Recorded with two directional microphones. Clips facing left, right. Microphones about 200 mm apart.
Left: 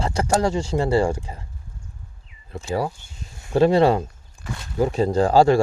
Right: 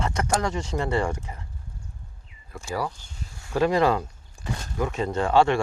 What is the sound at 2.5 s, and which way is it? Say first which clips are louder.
Speech: left 5 dB; 25° left (ahead or behind).